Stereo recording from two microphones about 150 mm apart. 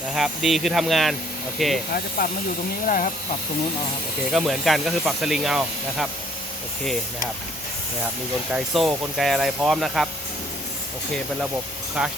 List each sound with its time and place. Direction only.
0.1 s speech: centre (ahead or behind)
1.9 s speech: 80° left
2.8 s speech: 65° left (ahead or behind)
4.3 s speech: centre (ahead or behind)
8.5 s speech: centre (ahead or behind)
12.0 s speech: 5° right (ahead or behind)